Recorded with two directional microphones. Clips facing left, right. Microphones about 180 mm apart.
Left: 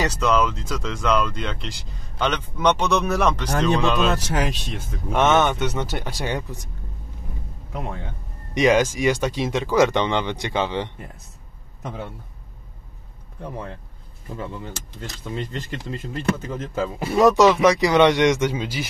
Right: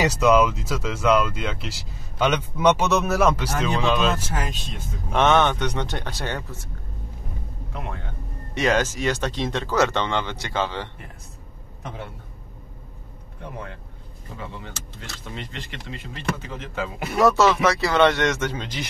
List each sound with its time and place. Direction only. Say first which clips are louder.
0.0 s speech: right 3 dB; 10° right (ahead or behind)
4.2 s speech: left 5 dB; 80° left
5.1 s speech: left 1 dB; 5° left (ahead or behind)
8.5 s speech: left 4 dB; 15° left (ahead or behind)
15.5 s speech: left 5 dB; 40° left (ahead or behind)
17.2 s speech: left 3 dB; 15° left (ahead or behind)